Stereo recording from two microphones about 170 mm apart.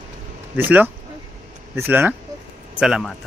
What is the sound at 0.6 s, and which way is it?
Speech, 10° right (ahead or behind).